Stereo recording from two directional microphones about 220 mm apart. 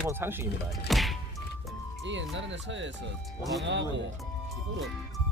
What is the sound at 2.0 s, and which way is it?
Speech, 55° right (ahead or behind).